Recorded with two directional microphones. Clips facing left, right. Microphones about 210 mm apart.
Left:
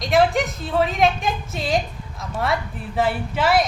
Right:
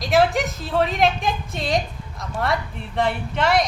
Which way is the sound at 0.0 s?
Centre (ahead or behind).